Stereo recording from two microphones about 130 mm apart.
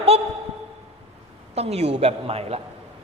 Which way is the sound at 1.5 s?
55° right (ahead or behind).